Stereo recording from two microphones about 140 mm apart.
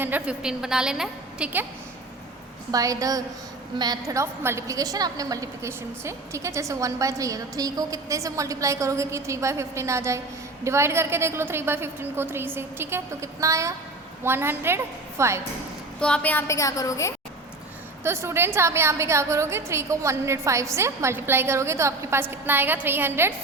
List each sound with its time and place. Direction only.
0.0 s a woman's voice: 10° right (ahead or behind)
2.7 s a woman's voice: 25° right (ahead or behind)
16.0 s a woman's voice: 5° left (ahead or behind); by 17.2 s 25° left (ahead or behind)
18.0 s a woman's voice: 20° right (ahead or behind)